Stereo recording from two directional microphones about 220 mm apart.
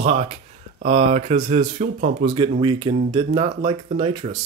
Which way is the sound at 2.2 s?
20° right (ahead or behind).